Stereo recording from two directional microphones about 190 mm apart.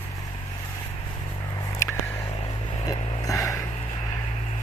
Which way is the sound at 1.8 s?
15° left (ahead or behind).